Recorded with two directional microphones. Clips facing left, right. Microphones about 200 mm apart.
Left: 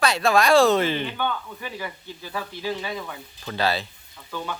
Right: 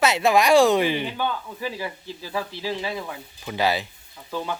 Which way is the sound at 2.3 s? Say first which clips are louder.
Right 1 dB; 15° right (ahead or behind).